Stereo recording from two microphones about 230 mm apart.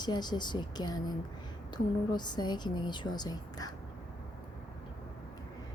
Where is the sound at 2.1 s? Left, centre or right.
Centre.